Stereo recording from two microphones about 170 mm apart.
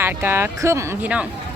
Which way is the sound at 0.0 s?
10° right (ahead or behind).